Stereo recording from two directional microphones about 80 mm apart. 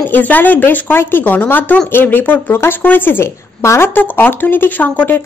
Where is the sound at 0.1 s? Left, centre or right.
Left.